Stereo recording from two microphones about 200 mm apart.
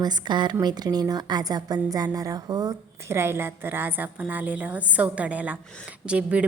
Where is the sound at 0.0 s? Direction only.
20° right (ahead or behind).